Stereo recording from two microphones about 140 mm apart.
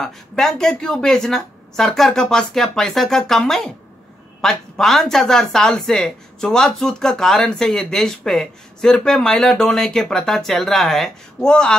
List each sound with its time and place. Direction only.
0.0 s speech: centre (ahead or behind)